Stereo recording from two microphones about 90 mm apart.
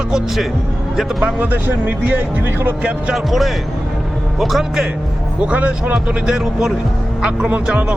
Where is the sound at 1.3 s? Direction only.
20° right (ahead or behind).